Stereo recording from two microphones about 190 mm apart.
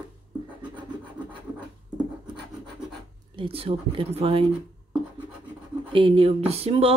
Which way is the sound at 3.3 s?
30° right (ahead or behind).